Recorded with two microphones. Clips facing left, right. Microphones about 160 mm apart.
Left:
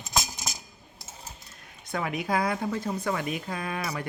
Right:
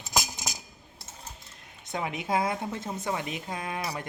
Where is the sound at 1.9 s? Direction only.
20° right (ahead or behind).